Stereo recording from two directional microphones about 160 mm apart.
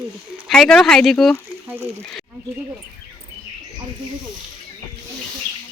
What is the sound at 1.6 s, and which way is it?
Speech, 15° right (ahead or behind).